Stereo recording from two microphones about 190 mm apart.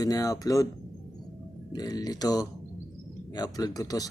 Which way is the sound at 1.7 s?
20° left (ahead or behind).